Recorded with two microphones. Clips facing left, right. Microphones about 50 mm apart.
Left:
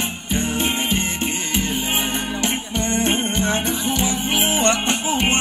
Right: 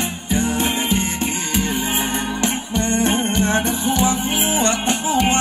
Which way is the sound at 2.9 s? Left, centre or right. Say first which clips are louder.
Right 1 dB; left.